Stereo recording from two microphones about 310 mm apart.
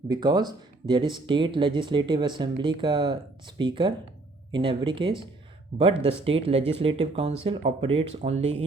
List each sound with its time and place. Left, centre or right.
0.1 s speech: centre